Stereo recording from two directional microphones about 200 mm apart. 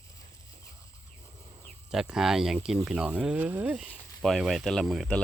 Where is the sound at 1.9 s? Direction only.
5° right (ahead or behind).